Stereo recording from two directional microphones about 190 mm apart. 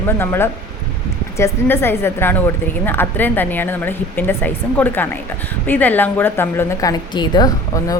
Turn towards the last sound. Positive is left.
turn(degrees=20)  # may be behind; listen again after turning